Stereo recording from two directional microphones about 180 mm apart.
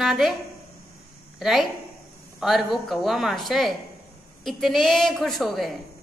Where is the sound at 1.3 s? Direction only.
Centre (ahead or behind).